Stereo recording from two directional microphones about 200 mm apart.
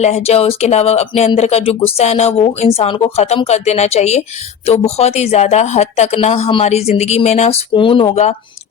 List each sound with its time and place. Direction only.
0.0 s speech: 30° left (ahead or behind)